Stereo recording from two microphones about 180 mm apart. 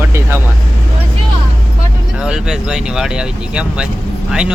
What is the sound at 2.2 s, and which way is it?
Speech, 5° right (ahead or behind).